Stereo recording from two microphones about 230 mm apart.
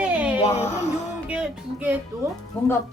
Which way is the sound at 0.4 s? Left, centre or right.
Left.